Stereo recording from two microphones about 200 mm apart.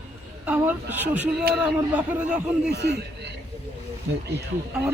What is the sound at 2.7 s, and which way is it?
Speech, 55° right (ahead or behind).